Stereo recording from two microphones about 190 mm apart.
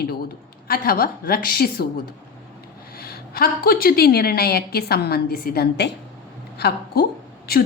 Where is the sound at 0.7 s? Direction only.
50° left (ahead or behind).